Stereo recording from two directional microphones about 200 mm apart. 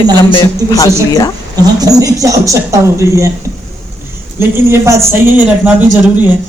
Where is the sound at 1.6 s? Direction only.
20° right (ahead or behind).